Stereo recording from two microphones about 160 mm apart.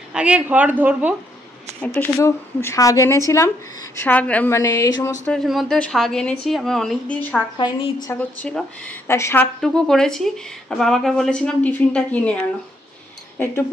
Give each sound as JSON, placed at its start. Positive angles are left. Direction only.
{"t": 0.1, "sound": "speech", "side_deg": -5}
{"t": 2.1, "sound": "a woman's voice", "side_deg": 20}
{"t": 5.2, "sound": "speech", "side_deg": 5}
{"t": 7.5, "sound": "a woman's voice", "side_deg": 30}
{"t": 8.1, "sound": "a woman's voice", "side_deg": 10}
{"t": 9.6, "sound": "speech", "side_deg": 5}